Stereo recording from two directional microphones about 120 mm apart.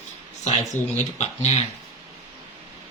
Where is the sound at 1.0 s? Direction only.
70° left (ahead or behind).